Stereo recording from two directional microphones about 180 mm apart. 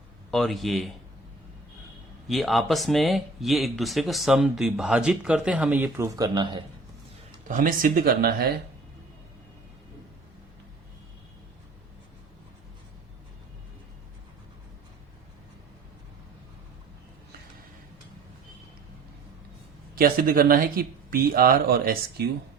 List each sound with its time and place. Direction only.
0.3 s speech: centre (ahead or behind)
2.2 s speech: centre (ahead or behind)
6.1 s speech: 25° right (ahead or behind)
7.4 s speech: 45° right (ahead or behind)
20.0 s speech: 55° right (ahead or behind)